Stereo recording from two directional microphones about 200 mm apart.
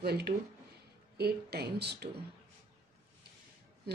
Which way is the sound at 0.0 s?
55° right (ahead or behind).